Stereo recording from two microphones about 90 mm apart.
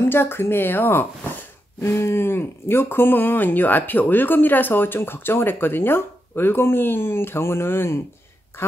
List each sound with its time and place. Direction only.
0.1 s speech: 25° left (ahead or behind)